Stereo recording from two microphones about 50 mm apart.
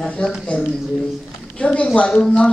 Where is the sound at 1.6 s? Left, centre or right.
Left.